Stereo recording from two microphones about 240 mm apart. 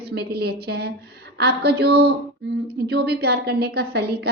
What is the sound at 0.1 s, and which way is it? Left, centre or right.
A woman's voice, right.